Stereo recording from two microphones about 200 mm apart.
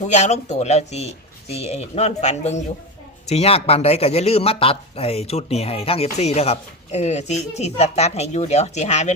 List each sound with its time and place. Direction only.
0.0 s speech: 35° left (ahead or behind)